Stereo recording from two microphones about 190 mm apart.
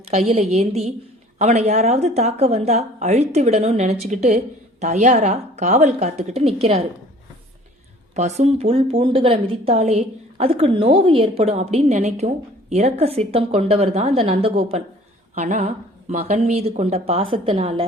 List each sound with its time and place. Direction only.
0.1 s a woman's voice: 35° right (ahead or behind)
8.1 s a woman's voice: 35° right (ahead or behind)